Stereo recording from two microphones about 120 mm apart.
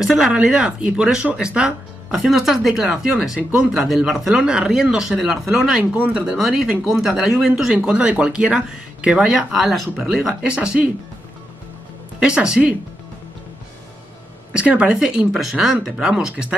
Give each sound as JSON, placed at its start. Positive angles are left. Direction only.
{"t": 0.0, "sound": "speech", "side_deg": -5}
{"t": 12.2, "sound": "speech", "side_deg": -5}
{"t": 14.5, "sound": "speech", "side_deg": -10}